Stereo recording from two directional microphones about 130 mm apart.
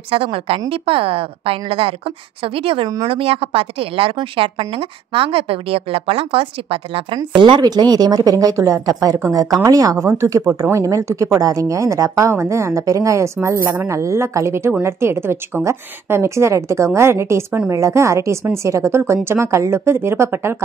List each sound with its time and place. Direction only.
0.1 s a woman's voice: 45° right (ahead or behind); by 20.5 s 20° right (ahead or behind)